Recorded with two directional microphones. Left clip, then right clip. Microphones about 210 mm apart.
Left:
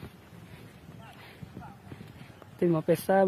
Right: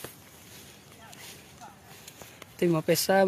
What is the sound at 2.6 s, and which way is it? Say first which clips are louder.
Speech: right 1 dB; 5° right (ahead or behind).